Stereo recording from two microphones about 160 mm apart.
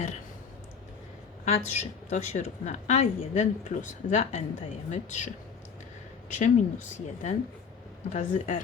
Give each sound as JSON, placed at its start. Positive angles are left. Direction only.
{"t": 1.5, "sound": "a woman's voice", "side_deg": 45}
{"t": 6.4, "sound": "a woman's voice", "side_deg": 50}